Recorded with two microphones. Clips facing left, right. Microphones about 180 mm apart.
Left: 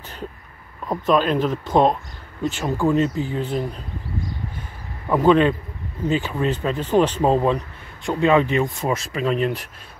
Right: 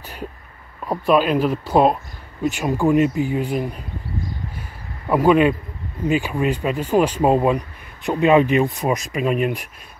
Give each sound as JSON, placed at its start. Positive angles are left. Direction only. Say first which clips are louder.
{"t": 0.8, "sound": "speech", "louder": "right 2 dB", "side_deg": -10}
{"t": 5.1, "sound": "speech", "louder": "right 1 dB", "side_deg": -10}